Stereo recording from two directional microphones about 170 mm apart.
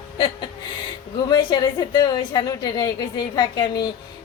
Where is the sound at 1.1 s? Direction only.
25° left (ahead or behind).